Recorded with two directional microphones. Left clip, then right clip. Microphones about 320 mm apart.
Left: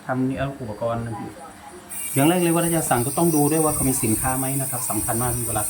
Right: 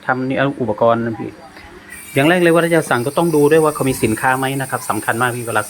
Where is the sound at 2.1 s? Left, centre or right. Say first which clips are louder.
Right 8 dB; centre.